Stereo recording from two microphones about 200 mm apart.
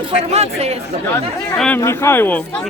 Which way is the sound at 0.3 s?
30° right (ahead or behind).